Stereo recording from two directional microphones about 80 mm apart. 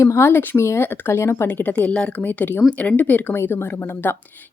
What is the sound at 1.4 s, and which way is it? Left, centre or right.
Speech, centre.